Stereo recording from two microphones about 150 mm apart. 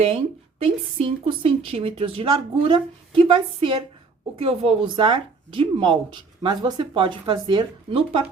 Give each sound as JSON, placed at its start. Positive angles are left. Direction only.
{"t": 0.6, "sound": "speech", "side_deg": -40}